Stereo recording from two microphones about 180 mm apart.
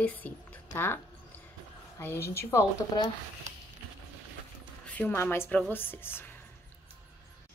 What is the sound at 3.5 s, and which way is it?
Music, 40° right (ahead or behind).